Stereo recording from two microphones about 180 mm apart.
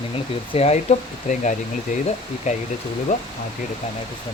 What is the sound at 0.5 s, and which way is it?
Speech, 35° left (ahead or behind).